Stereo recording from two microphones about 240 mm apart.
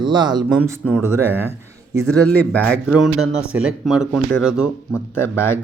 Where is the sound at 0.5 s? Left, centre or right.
Centre.